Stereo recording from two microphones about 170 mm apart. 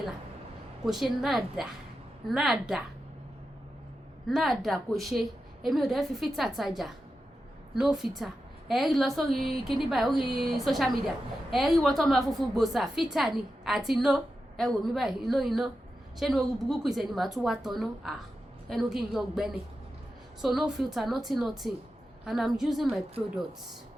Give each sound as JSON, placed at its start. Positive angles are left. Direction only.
{"t": 0.9, "sound": "a woman's voice", "side_deg": 0}
{"t": 4.3, "sound": "a woman's voice", "side_deg": 0}